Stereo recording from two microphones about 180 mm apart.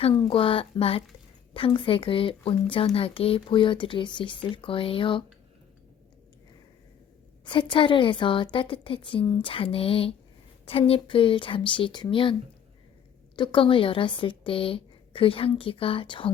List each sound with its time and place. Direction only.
0.1 s speech: 25° left (ahead or behind)
7.4 s speech: 25° left (ahead or behind)